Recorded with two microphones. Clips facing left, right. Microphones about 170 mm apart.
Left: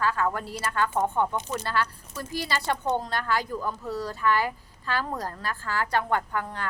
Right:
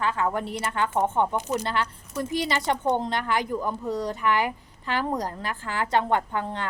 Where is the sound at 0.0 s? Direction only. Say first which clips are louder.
Right 1 dB; 20° right (ahead or behind).